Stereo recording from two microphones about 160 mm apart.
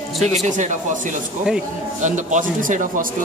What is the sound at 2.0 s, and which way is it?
Speech, 50° right (ahead or behind).